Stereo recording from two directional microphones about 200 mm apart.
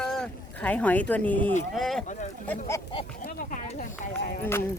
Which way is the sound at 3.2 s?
40° left (ahead or behind).